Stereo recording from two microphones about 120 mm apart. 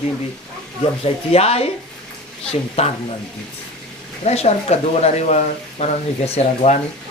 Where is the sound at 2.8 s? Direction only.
60° left (ahead or behind).